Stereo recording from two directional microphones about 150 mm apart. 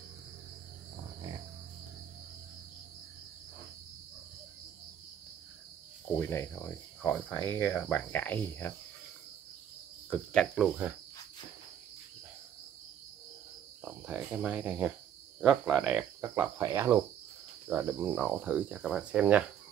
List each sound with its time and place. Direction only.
6.1 s speech: 15° left (ahead or behind)
10.0 s speech: 5° left (ahead or behind)
13.8 s speech: 5° right (ahead or behind)
16.2 s speech: 15° right (ahead or behind)